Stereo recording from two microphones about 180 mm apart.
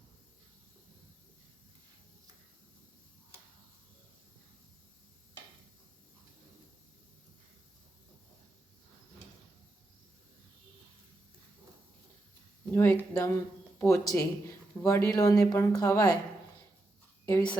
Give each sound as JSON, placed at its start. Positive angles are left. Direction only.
{"t": 12.7, "sound": "a woman's voice", "side_deg": 15}
{"t": 17.2, "sound": "a woman's voice", "side_deg": 15}